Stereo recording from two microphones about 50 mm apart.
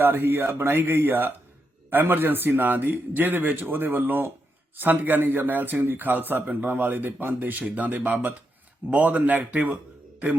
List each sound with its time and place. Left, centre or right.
0.0 s a man's voice: right